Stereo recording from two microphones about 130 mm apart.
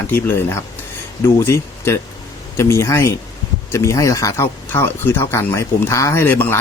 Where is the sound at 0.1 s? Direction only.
20° left (ahead or behind).